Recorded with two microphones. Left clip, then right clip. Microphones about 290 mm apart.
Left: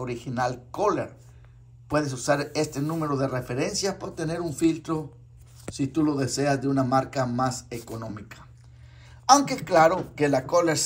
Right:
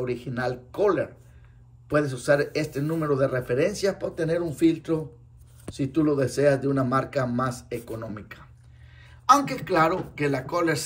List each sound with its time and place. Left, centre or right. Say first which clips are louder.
0.0 s a man's voice: even; centre